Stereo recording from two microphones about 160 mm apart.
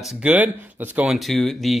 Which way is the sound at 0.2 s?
10° right (ahead or behind).